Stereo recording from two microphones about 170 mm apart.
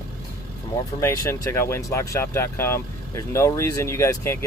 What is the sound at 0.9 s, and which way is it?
Speech, 20° left (ahead or behind).